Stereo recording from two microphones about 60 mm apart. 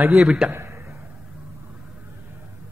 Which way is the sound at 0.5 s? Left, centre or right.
Right.